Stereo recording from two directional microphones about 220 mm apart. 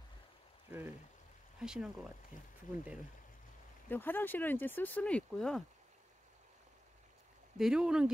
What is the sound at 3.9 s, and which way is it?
Speech, 10° left (ahead or behind).